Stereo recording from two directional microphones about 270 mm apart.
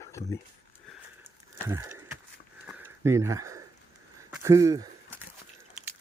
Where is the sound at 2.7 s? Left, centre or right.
Centre.